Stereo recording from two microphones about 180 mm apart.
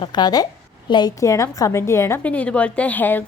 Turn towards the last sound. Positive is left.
turn(degrees=10)  # may be behind; listen again after turning